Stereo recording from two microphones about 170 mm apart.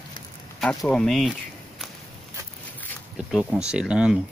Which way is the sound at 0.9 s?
5° left (ahead or behind).